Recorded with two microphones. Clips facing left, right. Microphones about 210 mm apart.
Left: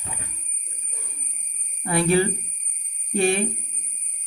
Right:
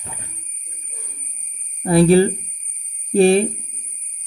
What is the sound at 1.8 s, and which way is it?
Speech, 35° right (ahead or behind).